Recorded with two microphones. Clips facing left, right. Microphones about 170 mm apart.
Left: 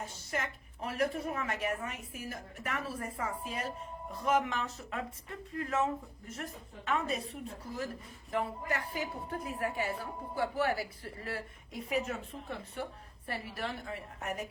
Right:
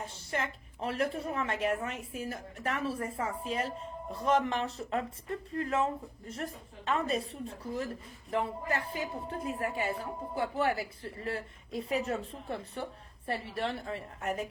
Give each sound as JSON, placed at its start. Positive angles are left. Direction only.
{"t": 0.3, "sound": "a woman's voice", "side_deg": -30}